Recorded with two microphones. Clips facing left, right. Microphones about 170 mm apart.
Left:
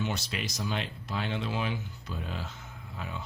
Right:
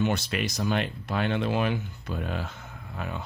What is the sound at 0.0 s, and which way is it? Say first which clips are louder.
Speech: right 7 dB; 60° right (ahead or behind).